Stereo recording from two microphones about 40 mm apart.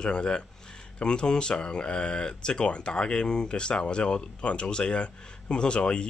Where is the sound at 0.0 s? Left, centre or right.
Left.